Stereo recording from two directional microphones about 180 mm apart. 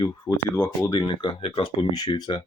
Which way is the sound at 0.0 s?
25° left (ahead or behind).